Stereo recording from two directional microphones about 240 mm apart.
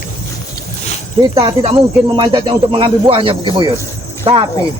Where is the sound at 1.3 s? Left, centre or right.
Right.